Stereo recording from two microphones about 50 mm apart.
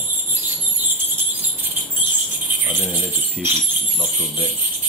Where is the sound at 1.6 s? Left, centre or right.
Right.